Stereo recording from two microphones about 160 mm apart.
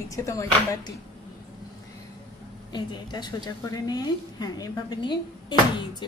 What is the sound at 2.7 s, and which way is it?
A woman's voice, 25° left (ahead or behind).